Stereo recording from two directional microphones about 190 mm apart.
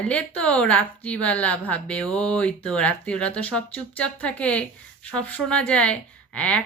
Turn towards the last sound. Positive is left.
turn(degrees=5)  # may be behind; listen again after turning